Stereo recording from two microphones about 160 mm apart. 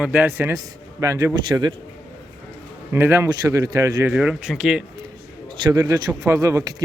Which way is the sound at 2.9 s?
15° right (ahead or behind).